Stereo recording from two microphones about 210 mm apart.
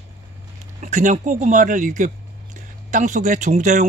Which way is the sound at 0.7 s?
35° right (ahead or behind).